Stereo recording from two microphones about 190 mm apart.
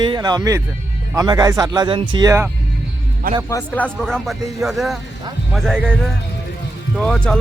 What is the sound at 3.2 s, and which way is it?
Speech, 50° right (ahead or behind).